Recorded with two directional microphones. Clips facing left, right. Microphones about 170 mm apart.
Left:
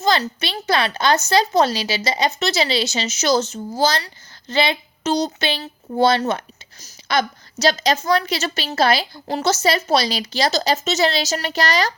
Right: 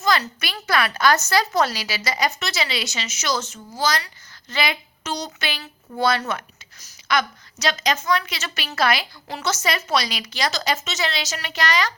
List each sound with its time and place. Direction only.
0.0 s a woman's voice: 30° left (ahead or behind)